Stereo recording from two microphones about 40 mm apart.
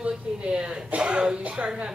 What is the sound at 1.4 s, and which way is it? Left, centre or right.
Speech, right.